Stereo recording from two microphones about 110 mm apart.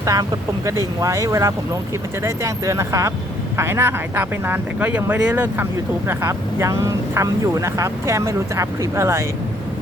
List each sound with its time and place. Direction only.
0.0 s speech: 30° right (ahead or behind); by 5.6 s 15° right (ahead or behind)
6.1 s speech: 25° right (ahead or behind)